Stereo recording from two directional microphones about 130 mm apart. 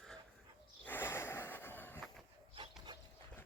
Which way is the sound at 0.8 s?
15° left (ahead or behind).